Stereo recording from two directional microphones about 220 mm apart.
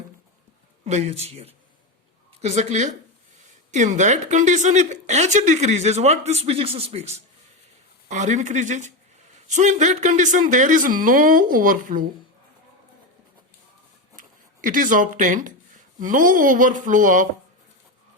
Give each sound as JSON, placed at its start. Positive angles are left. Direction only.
{"t": 0.9, "sound": "speech", "side_deg": -30}
{"t": 14.2, "sound": "speech", "side_deg": -35}